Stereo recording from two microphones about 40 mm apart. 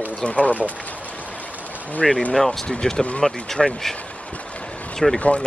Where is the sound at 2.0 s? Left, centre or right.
Centre.